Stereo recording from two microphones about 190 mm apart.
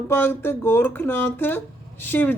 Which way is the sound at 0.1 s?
10° left (ahead or behind).